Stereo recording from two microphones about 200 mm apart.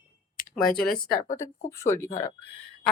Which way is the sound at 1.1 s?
45° left (ahead or behind).